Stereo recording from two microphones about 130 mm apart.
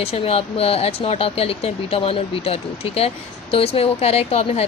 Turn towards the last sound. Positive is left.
turn(degrees=50)  # may be behind; listen again after turning